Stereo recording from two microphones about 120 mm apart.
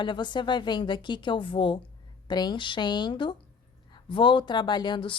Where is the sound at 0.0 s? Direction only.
40° left (ahead or behind).